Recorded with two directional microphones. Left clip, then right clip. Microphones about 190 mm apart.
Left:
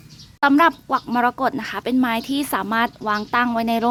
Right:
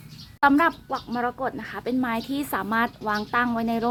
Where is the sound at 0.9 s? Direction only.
60° left (ahead or behind).